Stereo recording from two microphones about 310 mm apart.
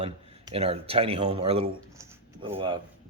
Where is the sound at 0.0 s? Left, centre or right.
Centre.